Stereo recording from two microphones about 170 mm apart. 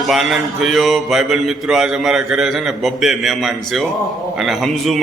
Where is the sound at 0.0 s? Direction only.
Centre (ahead or behind).